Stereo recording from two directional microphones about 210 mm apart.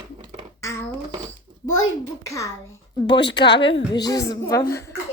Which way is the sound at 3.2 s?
55° left (ahead or behind).